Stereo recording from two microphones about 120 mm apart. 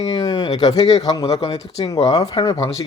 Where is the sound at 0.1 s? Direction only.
35° left (ahead or behind).